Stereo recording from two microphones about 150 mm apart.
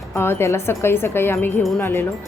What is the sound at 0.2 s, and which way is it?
Speech, 15° left (ahead or behind).